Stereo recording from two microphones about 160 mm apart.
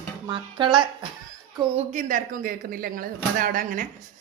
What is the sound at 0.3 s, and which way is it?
Speech, 30° right (ahead or behind).